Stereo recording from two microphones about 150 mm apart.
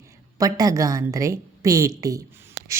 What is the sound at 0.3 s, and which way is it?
A woman's voice, 25° right (ahead or behind).